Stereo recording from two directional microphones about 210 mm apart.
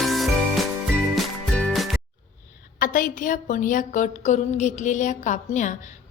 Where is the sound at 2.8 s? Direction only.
40° left (ahead or behind).